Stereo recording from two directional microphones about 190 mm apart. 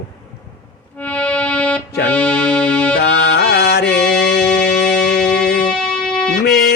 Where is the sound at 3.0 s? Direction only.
70° left (ahead or behind).